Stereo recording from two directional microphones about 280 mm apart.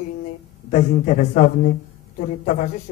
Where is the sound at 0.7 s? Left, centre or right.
Left.